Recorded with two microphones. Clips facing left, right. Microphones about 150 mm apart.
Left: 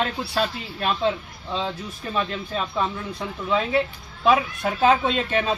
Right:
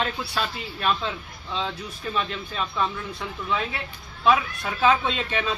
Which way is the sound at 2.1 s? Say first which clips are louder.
Left 3 dB; 35° left (ahead or behind).